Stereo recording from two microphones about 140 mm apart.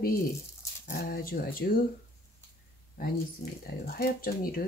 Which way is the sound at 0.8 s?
90° left.